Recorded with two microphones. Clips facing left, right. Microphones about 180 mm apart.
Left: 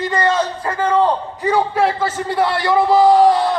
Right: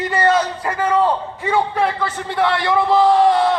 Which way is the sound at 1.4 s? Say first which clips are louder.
Left 3 dB; centre (ahead or behind).